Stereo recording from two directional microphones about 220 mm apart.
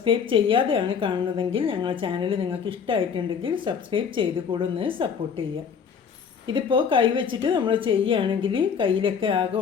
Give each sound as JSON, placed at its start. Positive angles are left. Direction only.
{"t": 0.0, "sound": "a woman's voice", "side_deg": -25}
{"t": 6.5, "sound": "a woman's voice", "side_deg": -20}